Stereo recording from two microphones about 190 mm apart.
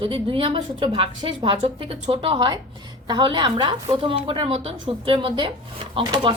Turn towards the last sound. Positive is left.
turn(degrees=-25)  # may be behind; listen again after turning